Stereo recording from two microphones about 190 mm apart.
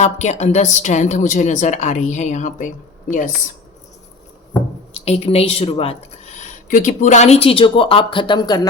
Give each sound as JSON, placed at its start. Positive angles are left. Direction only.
{"t": 0.0, "sound": "a woman's voice", "side_deg": 35}
{"t": 5.0, "sound": "a woman's voice", "side_deg": 30}
{"t": 6.4, "sound": "speech", "side_deg": 40}